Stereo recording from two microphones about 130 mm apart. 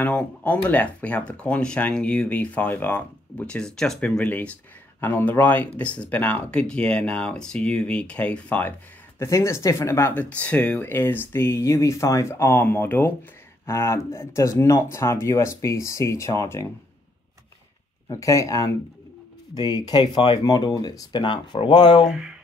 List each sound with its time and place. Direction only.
0.0 s speech: 10° left (ahead or behind)
9.2 s speech: 20° left (ahead or behind)
18.0 s speech: 25° left (ahead or behind)
22.0 s mantra: 5° right (ahead or behind)